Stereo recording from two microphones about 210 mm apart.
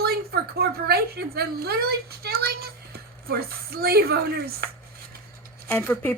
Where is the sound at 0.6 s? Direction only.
50° right (ahead or behind).